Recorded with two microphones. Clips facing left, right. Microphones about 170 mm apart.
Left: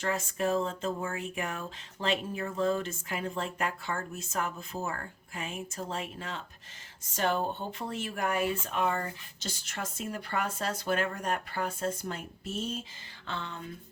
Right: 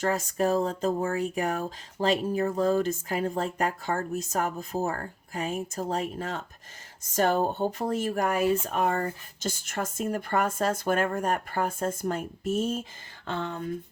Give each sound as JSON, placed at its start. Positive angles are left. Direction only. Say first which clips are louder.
{"t": 0.0, "sound": "speech", "louder": "right 5 dB", "side_deg": -40}